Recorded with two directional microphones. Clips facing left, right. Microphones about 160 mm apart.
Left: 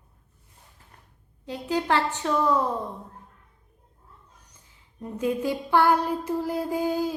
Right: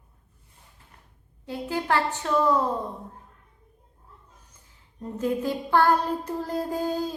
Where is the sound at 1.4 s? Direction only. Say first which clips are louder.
Left 2 dB; 15° left (ahead or behind).